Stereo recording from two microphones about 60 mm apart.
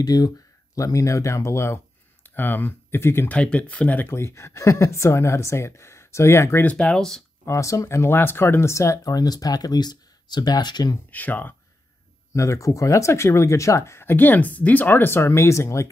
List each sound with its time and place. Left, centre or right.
0.1 s speech: left
0.7 s speech: left
2.2 s speech: left
3.3 s speech: centre
4.1 s speech: left
6.6 s speech: centre
7.4 s speech: left
11.1 s speech: left
12.3 s speech: left
14.0 s speech: left